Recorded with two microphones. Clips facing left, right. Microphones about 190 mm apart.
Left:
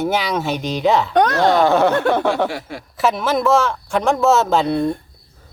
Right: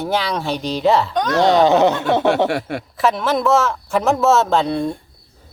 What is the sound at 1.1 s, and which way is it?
Speech, 65° left (ahead or behind).